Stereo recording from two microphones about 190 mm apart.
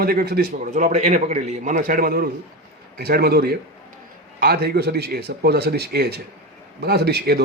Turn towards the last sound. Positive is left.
turn(degrees=-60)  # may be behind; listen again after turning